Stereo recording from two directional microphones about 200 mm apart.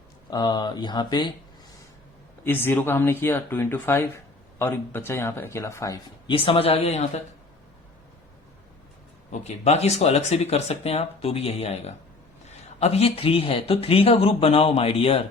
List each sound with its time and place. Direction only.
0.3 s speech: 20° left (ahead or behind)
2.4 s speech: 10° left (ahead or behind); by 7.2 s 35° left (ahead or behind)
9.3 s speech: 35° left (ahead or behind)